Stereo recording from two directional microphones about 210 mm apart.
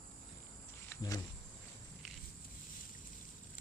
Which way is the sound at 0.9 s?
15° left (ahead or behind).